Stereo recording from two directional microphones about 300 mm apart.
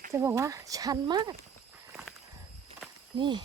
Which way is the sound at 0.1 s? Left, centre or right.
Centre.